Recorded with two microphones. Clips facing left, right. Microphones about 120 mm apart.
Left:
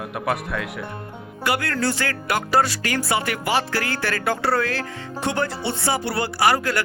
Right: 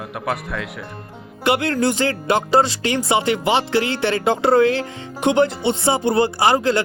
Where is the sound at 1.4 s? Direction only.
25° right (ahead or behind).